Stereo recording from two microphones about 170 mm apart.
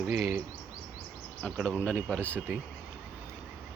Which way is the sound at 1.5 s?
5° right (ahead or behind).